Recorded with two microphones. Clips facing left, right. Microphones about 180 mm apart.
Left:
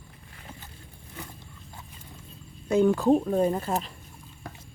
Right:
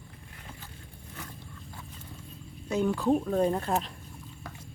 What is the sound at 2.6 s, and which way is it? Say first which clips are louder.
Speech: left 5 dB; 50° left (ahead or behind).